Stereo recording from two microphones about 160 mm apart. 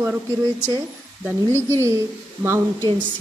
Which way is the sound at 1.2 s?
10° right (ahead or behind).